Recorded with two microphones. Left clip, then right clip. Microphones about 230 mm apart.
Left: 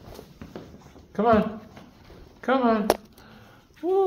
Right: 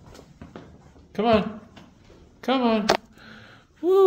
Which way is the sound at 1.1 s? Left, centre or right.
Right.